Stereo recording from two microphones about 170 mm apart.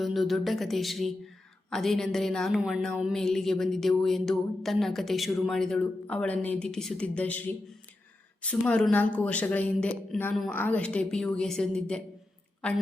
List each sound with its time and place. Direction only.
0.0 s speech: centre (ahead or behind)